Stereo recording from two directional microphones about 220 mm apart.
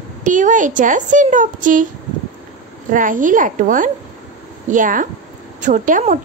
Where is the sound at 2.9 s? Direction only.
35° right (ahead or behind).